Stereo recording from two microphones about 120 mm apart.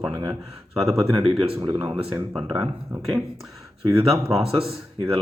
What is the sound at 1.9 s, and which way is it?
Speech, 45° right (ahead or behind).